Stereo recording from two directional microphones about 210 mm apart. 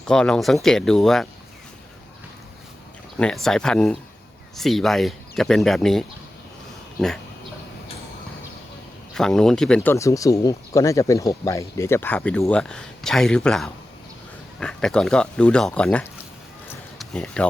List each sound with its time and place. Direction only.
0.1 s speech: 5° left (ahead or behind)
3.2 s speech: 5° left (ahead or behind)
9.1 s speech: 5° left (ahead or behind)